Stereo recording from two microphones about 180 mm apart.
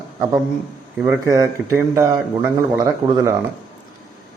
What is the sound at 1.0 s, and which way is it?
Speech, 15° right (ahead or behind).